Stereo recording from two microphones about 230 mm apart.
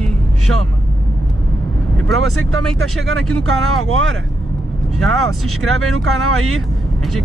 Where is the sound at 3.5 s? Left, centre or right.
Right.